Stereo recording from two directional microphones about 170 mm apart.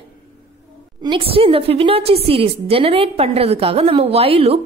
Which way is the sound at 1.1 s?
30° right (ahead or behind).